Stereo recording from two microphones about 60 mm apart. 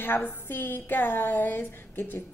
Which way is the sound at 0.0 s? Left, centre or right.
Left.